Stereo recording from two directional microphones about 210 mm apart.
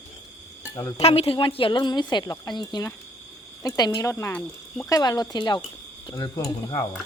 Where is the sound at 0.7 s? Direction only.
15° left (ahead or behind).